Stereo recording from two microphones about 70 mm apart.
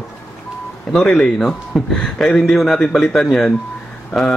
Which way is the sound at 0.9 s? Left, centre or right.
Centre.